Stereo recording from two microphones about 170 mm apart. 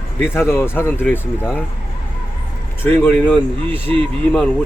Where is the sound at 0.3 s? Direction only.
15° left (ahead or behind).